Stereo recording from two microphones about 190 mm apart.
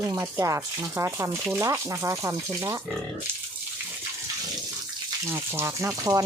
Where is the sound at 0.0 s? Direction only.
15° right (ahead or behind).